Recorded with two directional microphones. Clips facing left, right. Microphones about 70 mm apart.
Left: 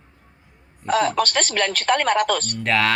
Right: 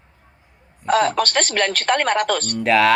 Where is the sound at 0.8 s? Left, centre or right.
Right.